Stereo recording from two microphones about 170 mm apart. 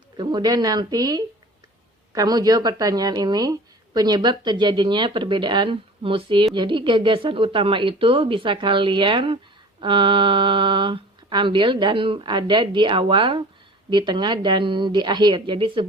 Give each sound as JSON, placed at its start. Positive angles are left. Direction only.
{"t": 0.2, "sound": "speech", "side_deg": -25}